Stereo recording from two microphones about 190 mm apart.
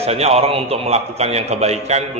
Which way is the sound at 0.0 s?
35° right (ahead or behind).